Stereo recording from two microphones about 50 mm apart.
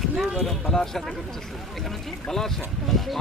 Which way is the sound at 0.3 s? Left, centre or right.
Centre.